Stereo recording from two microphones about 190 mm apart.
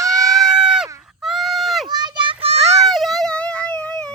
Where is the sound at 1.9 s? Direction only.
20° right (ahead or behind).